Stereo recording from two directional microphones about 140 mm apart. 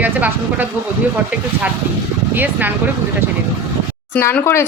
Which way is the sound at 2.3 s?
15° right (ahead or behind).